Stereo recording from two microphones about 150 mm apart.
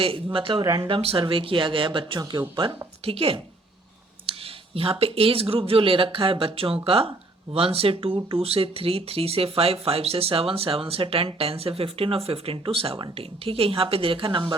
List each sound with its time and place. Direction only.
0.3 s speech: 35° right (ahead or behind)
0.6 s speech: 20° right (ahead or behind)
0.9 s speech: 35° right (ahead or behind)